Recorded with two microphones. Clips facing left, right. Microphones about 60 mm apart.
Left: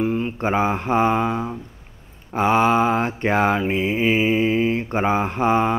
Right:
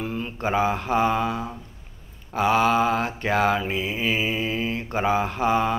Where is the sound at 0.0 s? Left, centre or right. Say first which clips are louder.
Left 6 dB; left.